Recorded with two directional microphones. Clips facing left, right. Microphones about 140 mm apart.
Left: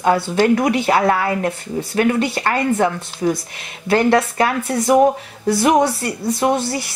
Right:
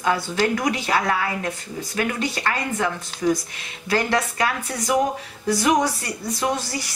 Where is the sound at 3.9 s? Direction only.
60° left (ahead or behind).